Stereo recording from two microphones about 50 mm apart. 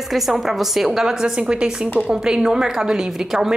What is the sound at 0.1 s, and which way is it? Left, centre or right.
A woman's voice, centre.